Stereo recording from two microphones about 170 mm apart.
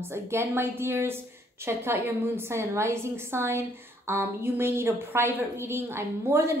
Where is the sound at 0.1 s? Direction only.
15° right (ahead or behind).